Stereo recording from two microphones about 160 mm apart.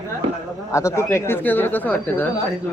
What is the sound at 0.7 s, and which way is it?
Speech, 20° left (ahead or behind).